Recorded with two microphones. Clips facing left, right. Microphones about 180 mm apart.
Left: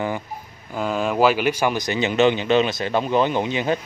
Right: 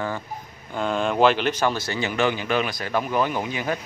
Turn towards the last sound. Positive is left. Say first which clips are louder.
# left 5 dB
turn(degrees=25)  # may be behind; listen again after turning